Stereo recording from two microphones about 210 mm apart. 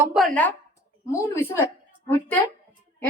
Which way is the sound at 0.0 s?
5° right (ahead or behind).